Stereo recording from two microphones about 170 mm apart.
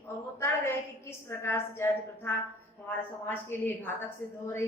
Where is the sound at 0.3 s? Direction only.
15° left (ahead or behind).